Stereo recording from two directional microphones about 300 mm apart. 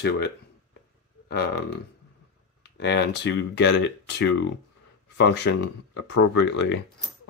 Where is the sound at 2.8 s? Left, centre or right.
Left.